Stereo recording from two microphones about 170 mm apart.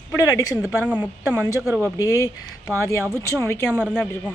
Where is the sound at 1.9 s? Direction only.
20° left (ahead or behind).